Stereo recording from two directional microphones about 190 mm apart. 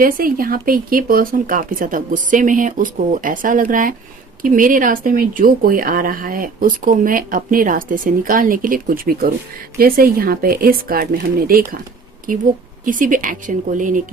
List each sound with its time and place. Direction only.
0.0 s speech: 50° right (ahead or behind)
12.8 s speech: 45° right (ahead or behind)